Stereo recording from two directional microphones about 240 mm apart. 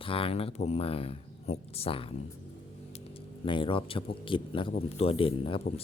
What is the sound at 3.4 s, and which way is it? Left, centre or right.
Speech, left.